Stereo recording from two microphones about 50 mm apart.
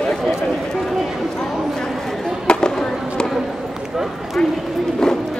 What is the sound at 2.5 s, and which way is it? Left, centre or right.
Fireworks, centre.